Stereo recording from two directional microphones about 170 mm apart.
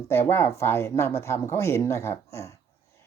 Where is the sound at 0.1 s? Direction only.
15° left (ahead or behind).